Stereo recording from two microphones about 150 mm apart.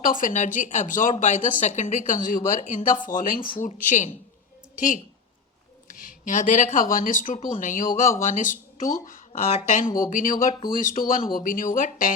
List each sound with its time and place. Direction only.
0.0 s speech: 60° left (ahead or behind)
5.9 s speech: 65° left (ahead or behind)